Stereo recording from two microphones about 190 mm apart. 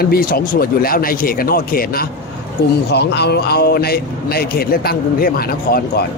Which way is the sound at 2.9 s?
60° left (ahead or behind).